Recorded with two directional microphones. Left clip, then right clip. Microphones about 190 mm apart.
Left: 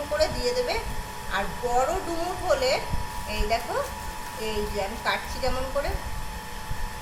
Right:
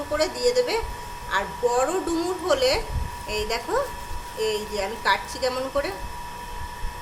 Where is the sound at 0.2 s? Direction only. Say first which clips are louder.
Right 4 dB; 50° right (ahead or behind).